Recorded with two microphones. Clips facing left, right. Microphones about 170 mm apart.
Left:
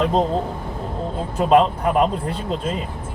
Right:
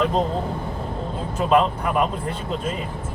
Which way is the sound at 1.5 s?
35° left (ahead or behind).